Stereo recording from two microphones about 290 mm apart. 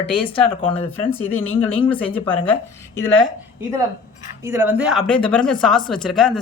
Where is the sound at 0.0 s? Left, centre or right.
Centre.